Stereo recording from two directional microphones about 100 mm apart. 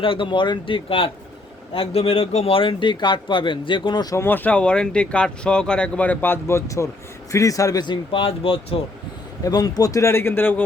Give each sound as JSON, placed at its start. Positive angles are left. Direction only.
{"t": 0.0, "sound": "speech", "side_deg": 60}
{"t": 1.7, "sound": "speech", "side_deg": 80}
{"t": 4.1, "sound": "speech", "side_deg": 25}
{"t": 7.9, "sound": "speech", "side_deg": 60}
{"t": 9.4, "sound": "speech", "side_deg": 40}